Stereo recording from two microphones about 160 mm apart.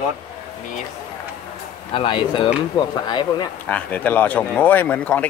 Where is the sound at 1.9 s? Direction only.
30° left (ahead or behind).